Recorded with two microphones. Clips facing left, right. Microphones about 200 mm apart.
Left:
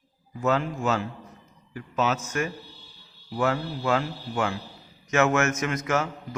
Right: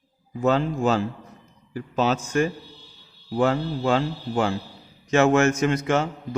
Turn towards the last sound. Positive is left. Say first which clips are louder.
# right 5 dB
turn(degrees=-30)  # may be behind; listen again after turning